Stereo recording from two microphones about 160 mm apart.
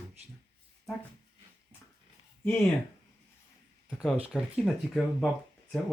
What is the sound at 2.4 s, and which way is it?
Speech, 15° left (ahead or behind).